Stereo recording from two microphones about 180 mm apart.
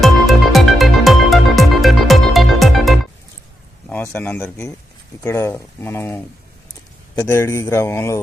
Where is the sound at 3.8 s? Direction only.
10° left (ahead or behind).